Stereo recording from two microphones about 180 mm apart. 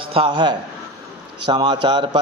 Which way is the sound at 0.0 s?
30° right (ahead or behind).